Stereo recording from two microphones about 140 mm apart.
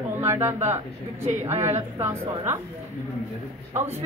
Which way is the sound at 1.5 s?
50° right (ahead or behind).